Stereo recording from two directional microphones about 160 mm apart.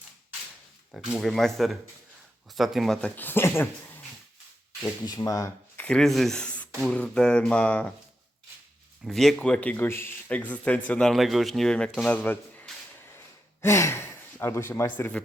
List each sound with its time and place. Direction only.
0.9 s a man's voice: centre (ahead or behind); by 4.0 s 15° left (ahead or behind)
5.0 s speech: 20° left (ahead or behind)
5.8 s a man's voice: 5° left (ahead or behind)
9.0 s a man's voice: centre (ahead or behind)
13.1 s gasp: 15° left (ahead or behind)